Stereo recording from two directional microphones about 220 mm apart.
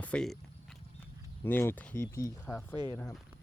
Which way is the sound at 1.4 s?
10° left (ahead or behind).